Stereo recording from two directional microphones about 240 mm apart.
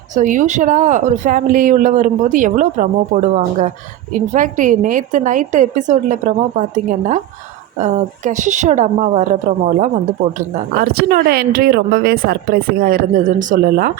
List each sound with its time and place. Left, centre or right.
0.1 s a woman's voice: right